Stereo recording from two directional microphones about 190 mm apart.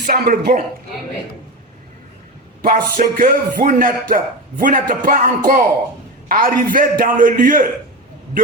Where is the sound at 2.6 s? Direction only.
50° right (ahead or behind).